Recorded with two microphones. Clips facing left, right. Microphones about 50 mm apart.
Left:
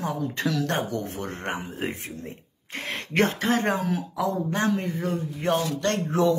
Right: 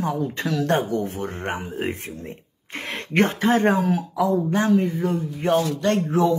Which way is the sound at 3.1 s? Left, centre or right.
Right.